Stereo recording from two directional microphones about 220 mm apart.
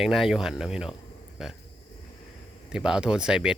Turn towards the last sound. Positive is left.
turn(degrees=-5)  # may be behind; listen again after turning